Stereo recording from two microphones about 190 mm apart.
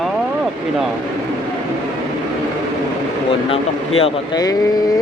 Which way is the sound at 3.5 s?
30° left (ahead or behind).